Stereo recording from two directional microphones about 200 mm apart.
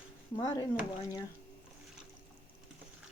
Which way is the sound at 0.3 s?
15° left (ahead or behind).